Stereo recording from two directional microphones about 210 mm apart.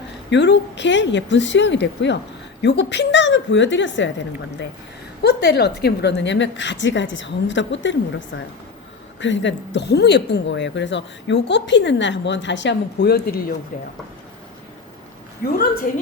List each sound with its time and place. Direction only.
0.3 s a woman's voice: 55° left (ahead or behind)
5.2 s a woman's voice: 50° left (ahead or behind)
15.4 s a woman's voice: 45° left (ahead or behind)